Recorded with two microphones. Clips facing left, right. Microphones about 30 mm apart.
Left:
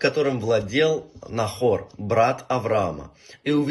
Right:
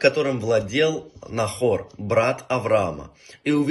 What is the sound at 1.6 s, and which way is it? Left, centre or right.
Speech, right.